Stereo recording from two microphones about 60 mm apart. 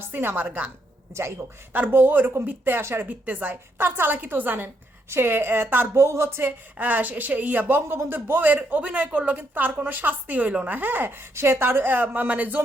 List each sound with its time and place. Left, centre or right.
0.1 s a woman's voice: right
0.3 s a woman's voice: right
1.1 s speech: right
1.7 s a woman's voice: right
3.1 s a woman's voice: right
6.7 s a woman's voice: right
11.2 s speech: right
11.6 s a woman's voice: right